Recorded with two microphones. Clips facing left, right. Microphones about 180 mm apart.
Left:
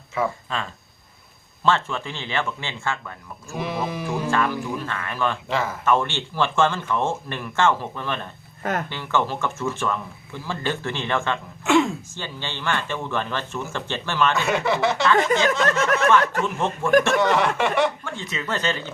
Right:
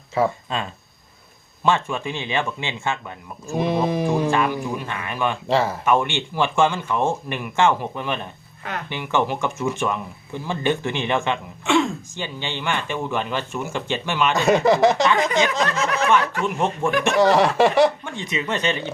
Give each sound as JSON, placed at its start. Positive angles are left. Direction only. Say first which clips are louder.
{"t": 0.1, "sound": "speech", "louder": "right 4 dB", "side_deg": -35}
{"t": 1.6, "sound": "speech", "louder": "right 1 dB", "side_deg": -15}
{"t": 3.5, "sound": "speech", "louder": "right 6 dB", "side_deg": -35}
{"t": 4.3, "sound": "speech", "louder": "right 2 dB", "side_deg": -15}
{"t": 5.5, "sound": "speech", "louder": "right 5 dB", "side_deg": -35}
{"t": 5.8, "sound": "speech", "louder": "right 2 dB", "side_deg": -15}
{"t": 11.6, "sound": "a sound", "louder": "left 1 dB", "side_deg": 5}
{"t": 12.1, "sound": "speech", "louder": "right 3 dB", "side_deg": -15}
{"t": 14.3, "sound": "speech", "louder": "right 6 dB", "side_deg": -40}
{"t": 16.2, "sound": "speech", "louder": "left 1 dB", "side_deg": 45}
{"t": 16.5, "sound": "speech", "louder": "right 2 dB", "side_deg": -15}
{"t": 17.2, "sound": "speech", "louder": "right 4 dB", "side_deg": -35}
{"t": 18.0, "sound": "speech", "louder": "right 3 dB", "side_deg": -15}